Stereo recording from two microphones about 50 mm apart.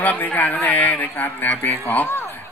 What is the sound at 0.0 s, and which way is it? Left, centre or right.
Speech, left.